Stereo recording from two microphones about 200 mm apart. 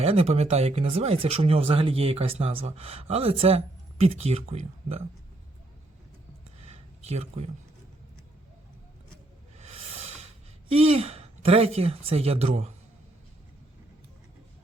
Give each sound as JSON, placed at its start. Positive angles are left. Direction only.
{"t": 0.0, "sound": "speech", "side_deg": -30}
{"t": 6.7, "sound": "a sound", "side_deg": -35}
{"t": 9.6, "sound": "music", "side_deg": -30}
{"t": 10.7, "sound": "speech", "side_deg": -30}